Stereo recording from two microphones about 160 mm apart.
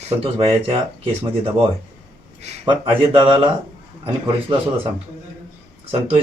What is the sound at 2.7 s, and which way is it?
Speech, 30° right (ahead or behind).